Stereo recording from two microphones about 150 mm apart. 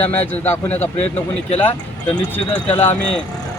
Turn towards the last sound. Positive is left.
turn(degrees=10)  # may be behind; listen again after turning